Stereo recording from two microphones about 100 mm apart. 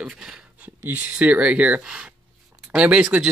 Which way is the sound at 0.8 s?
15° right (ahead or behind).